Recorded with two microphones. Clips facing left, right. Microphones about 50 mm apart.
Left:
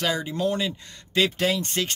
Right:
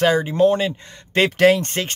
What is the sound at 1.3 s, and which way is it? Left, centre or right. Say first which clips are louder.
Speech: right 10 dB; right.